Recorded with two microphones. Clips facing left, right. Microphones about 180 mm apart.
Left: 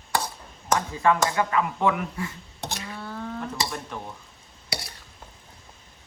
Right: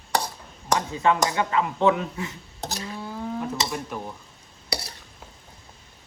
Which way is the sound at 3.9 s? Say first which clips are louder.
Right 3 dB; 10° right (ahead or behind).